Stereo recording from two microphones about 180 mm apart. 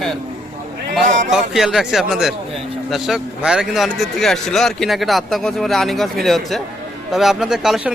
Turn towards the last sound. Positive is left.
turn(degrees=-5)  # may be behind; listen again after turning